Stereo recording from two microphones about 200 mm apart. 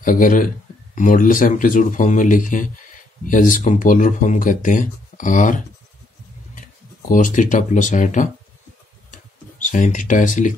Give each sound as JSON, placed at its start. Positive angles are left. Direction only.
{"t": 0.0, "sound": "speech", "side_deg": 40}
{"t": 7.1, "sound": "speech", "side_deg": 40}
{"t": 9.1, "sound": "a sound", "side_deg": 40}